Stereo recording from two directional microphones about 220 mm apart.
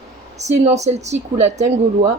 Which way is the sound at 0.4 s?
30° right (ahead or behind).